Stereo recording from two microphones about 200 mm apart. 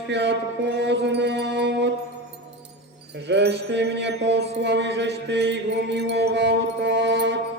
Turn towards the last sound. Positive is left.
turn(degrees=-60)  # may be behind; listen again after turning